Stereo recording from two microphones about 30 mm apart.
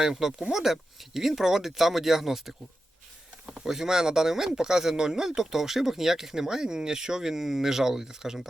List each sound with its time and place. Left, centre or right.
0.2 s speech: centre